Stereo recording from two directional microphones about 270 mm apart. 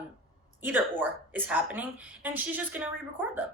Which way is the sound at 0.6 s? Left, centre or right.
Centre.